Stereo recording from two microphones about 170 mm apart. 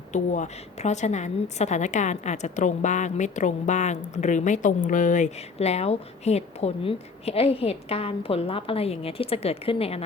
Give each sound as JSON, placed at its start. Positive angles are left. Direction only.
{"t": 0.1, "sound": "a woman's voice", "side_deg": 45}